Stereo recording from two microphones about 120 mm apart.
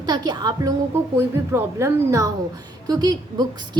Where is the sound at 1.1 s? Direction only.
20° right (ahead or behind).